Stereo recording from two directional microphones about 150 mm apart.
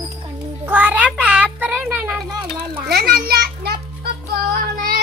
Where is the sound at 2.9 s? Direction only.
90° right.